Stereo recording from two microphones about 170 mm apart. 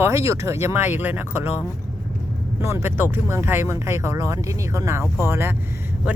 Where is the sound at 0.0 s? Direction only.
15° right (ahead or behind).